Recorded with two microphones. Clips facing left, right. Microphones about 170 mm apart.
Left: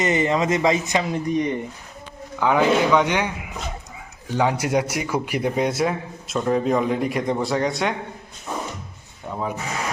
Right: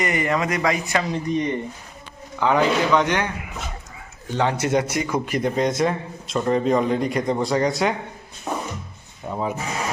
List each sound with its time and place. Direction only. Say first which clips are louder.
0.0 s a man's voice: left 2 dB; 25° left (ahead or behind); by 7.9 s centre (ahead or behind)
8.5 s music: right 2 dB; 55° right (ahead or behind)
9.3 s speech: right 2 dB; 5° right (ahead or behind)